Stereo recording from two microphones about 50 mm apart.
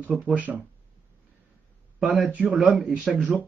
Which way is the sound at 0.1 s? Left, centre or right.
Centre.